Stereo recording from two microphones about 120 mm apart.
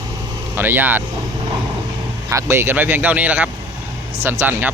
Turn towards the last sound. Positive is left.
turn(degrees=-15)  # may be behind; listen again after turning